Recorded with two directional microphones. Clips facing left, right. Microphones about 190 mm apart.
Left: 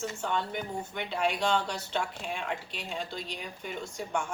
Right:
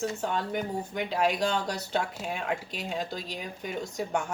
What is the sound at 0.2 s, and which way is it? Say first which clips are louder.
Speech: right 2 dB; 40° right (ahead or behind).